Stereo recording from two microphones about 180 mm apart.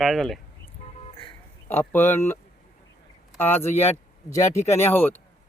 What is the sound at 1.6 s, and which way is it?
Speech, 10° left (ahead or behind).